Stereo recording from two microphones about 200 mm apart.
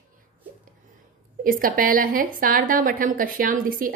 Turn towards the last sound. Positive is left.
turn(degrees=-45)  # may be behind; listen again after turning